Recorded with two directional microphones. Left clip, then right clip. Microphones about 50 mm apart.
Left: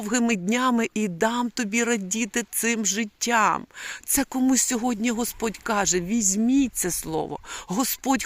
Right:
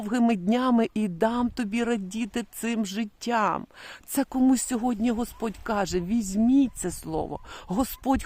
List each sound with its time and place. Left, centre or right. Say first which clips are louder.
0.0 s speech: left 1 dB; right
0.8 s speech: left 1 dB; right
2.7 s speech: left 5 dB; right
3.2 s speech: left 4 dB; right
5.8 s speech: left 4 dB; right
6.5 s speech: right 3 dB; right
7.7 s speech: left 2 dB; right